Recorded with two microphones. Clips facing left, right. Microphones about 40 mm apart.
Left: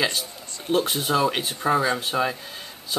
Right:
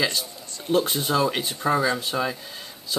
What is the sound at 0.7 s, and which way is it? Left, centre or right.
Speech, centre.